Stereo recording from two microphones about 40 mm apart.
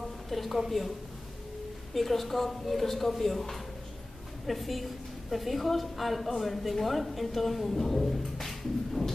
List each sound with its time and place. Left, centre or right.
0.3 s a woman's voice: centre
2.0 s a woman's voice: centre